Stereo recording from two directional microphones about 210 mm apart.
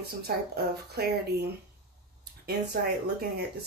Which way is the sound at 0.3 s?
45° right (ahead or behind).